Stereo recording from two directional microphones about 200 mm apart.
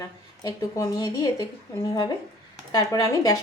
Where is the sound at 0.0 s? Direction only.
15° left (ahead or behind).